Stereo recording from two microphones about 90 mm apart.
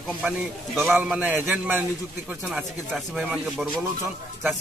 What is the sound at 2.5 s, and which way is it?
Speech, 5° right (ahead or behind).